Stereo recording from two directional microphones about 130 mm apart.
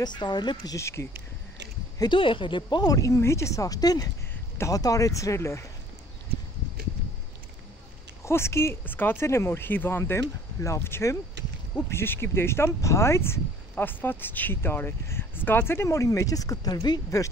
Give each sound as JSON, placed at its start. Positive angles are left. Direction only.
{"t": 0.0, "sound": "speech", "side_deg": 35}
{"t": 0.7, "sound": "speech", "side_deg": 20}
{"t": 2.0, "sound": "speech", "side_deg": 40}
{"t": 8.2, "sound": "speech", "side_deg": 20}